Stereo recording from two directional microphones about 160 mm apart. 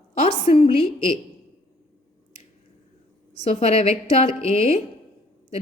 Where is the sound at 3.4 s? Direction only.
40° left (ahead or behind).